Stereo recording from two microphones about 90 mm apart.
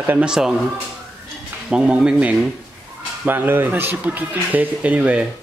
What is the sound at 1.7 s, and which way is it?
Speech, 10° right (ahead or behind).